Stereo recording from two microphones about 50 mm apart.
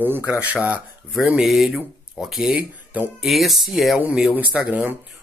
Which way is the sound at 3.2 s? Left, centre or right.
Centre.